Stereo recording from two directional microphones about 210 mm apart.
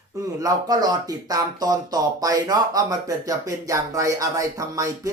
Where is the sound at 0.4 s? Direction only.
20° right (ahead or behind).